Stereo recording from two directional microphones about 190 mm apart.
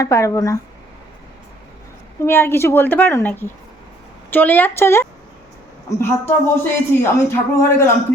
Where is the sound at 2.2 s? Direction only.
10° left (ahead or behind).